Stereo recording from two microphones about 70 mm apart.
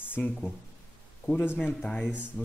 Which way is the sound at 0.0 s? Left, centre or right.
Left.